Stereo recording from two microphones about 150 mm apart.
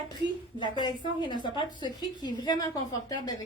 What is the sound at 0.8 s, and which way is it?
A woman's voice, 30° left (ahead or behind).